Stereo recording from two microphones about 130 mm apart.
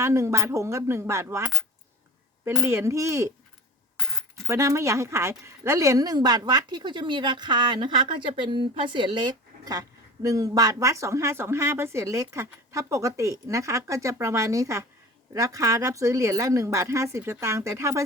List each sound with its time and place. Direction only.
0.0 s speech: 20° right (ahead or behind)
4.4 s a woman's voice: 25° right (ahead or behind)